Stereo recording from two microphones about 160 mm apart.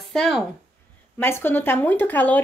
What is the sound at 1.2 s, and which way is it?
A woman's voice, 15° left (ahead or behind).